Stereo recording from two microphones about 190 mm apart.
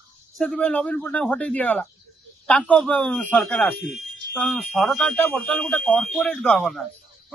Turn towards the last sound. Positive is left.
turn(degrees=0)  # may be behind; listen again after turning